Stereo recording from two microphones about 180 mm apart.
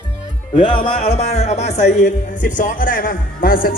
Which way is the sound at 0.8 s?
35° left (ahead or behind).